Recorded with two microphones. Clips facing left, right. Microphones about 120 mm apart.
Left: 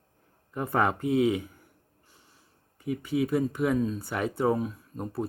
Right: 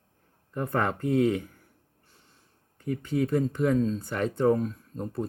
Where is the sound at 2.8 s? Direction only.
10° left (ahead or behind).